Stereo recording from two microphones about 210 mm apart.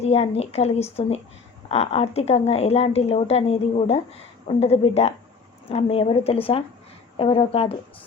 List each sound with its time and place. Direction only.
0.0 s a woman's voice: 30° left (ahead or behind)